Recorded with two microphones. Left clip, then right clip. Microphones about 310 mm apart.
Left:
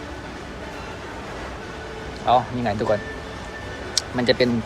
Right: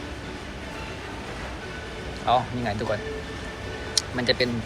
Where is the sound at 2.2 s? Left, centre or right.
Centre.